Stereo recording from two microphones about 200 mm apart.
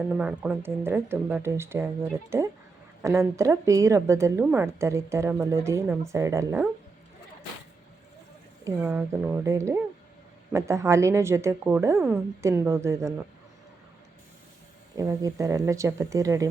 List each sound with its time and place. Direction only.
0.1 s a woman's voice: 5° right (ahead or behind)
8.6 s a woman's voice: 10° right (ahead or behind)
14.9 s a woman's voice: 15° right (ahead or behind)